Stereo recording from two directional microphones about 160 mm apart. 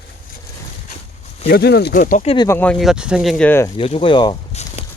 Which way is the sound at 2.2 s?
35° left (ahead or behind).